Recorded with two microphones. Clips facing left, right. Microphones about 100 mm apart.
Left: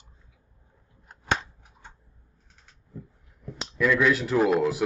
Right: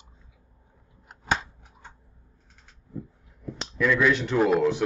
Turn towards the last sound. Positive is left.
turn(degrees=5)  # may be behind; listen again after turning